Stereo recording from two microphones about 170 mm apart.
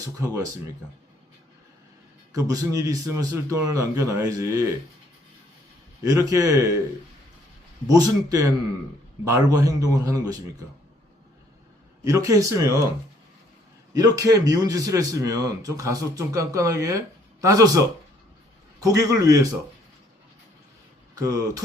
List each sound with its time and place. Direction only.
0.0 s a man's voice: 20° right (ahead or behind)
2.3 s a man's voice: 20° right (ahead or behind)
6.1 s a man's voice: 20° right (ahead or behind)
7.9 s a man's voice: 20° right (ahead or behind)
12.0 s a man's voice: 20° right (ahead or behind)
13.9 s a man's voice: 20° right (ahead or behind)
21.2 s a man's voice: 20° right (ahead or behind)